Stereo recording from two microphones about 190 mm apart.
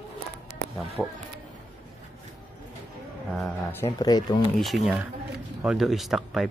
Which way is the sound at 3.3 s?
5° left (ahead or behind).